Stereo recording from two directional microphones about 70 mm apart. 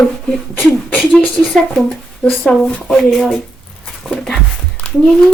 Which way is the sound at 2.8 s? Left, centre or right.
Centre.